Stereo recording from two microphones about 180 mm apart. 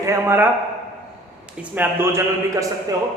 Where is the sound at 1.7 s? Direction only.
15° right (ahead or behind).